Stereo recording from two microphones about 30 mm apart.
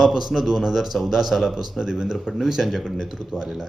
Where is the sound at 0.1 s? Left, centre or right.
Centre.